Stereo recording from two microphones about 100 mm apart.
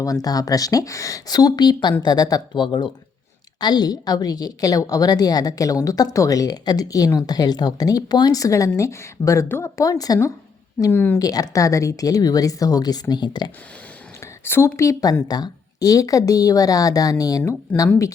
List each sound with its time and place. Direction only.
0.0 s a woman's voice: 35° left (ahead or behind)
9.8 s a woman's voice: 40° left (ahead or behind)
10.9 s a woman's voice: 20° left (ahead or behind)
11.2 s a woman's voice: 35° left (ahead or behind)
14.4 s a woman's voice: 25° left (ahead or behind)